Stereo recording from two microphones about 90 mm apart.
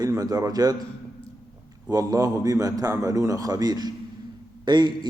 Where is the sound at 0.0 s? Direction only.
40° right (ahead or behind).